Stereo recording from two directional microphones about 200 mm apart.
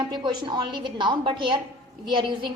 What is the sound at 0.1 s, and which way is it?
A woman's voice, 25° right (ahead or behind).